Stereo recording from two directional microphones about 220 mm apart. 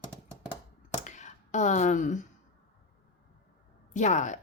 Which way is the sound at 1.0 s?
35° left (ahead or behind).